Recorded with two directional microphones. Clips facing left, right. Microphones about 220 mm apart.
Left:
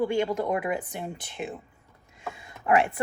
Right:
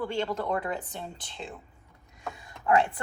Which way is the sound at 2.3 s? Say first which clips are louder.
Left 1 dB; 25° left (ahead or behind).